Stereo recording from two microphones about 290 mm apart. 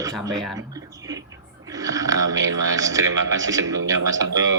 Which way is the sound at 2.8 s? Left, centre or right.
Centre.